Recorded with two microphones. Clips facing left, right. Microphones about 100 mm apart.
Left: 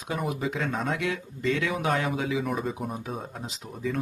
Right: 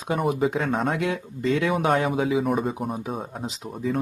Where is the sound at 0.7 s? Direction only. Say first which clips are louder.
Right 5 dB; 50° right (ahead or behind).